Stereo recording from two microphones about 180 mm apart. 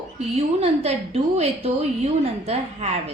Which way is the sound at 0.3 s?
35° right (ahead or behind).